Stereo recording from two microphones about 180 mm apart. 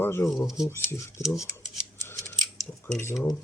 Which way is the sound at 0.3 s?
Centre (ahead or behind).